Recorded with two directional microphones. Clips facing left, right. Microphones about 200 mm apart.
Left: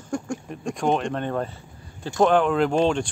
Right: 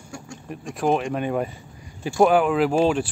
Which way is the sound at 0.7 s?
5° right (ahead or behind).